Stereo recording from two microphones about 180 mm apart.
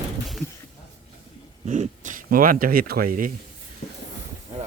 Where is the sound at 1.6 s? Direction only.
40° right (ahead or behind).